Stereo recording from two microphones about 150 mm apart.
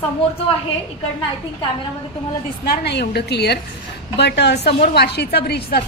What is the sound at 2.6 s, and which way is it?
A woman's voice, 90° left.